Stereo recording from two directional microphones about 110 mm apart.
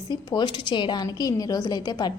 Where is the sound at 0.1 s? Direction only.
40° left (ahead or behind).